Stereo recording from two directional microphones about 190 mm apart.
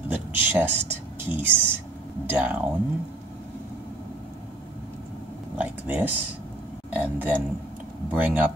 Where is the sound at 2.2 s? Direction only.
10° right (ahead or behind).